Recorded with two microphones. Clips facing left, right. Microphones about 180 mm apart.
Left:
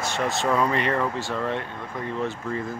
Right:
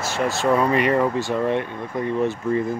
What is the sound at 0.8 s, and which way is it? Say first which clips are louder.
Speech: right 6 dB; 15° right (ahead or behind).